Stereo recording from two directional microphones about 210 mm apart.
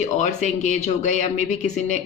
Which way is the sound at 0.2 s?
35° left (ahead or behind).